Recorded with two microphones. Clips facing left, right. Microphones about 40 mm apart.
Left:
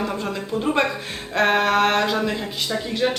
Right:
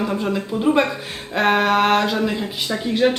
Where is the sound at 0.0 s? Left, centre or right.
Centre.